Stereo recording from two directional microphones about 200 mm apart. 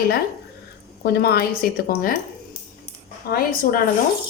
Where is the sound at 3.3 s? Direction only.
50° left (ahead or behind).